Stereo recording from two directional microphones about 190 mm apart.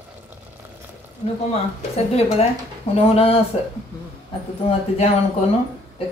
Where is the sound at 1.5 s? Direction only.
30° left (ahead or behind).